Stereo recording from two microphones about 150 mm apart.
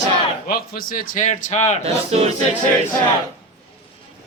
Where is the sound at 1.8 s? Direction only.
45° right (ahead or behind).